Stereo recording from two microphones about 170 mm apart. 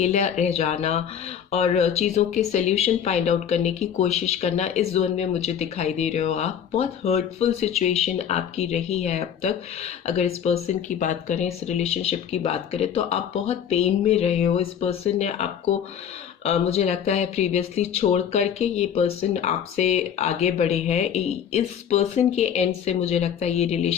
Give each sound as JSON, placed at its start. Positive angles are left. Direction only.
{"t": 0.0, "sound": "speech", "side_deg": 40}